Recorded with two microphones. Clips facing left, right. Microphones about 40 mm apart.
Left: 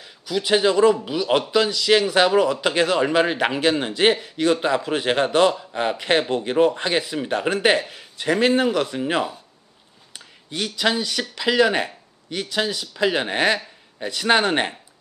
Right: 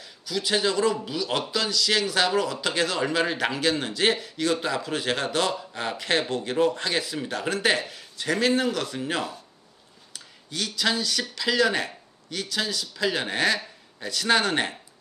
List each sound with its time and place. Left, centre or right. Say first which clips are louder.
0.0 s a man's voice: left 4 dB; centre
10.1 s a sound: left 4 dB; left
10.8 s speech: left 3 dB; centre